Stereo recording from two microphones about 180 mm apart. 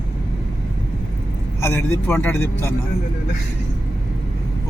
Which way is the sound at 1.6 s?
15° left (ahead or behind).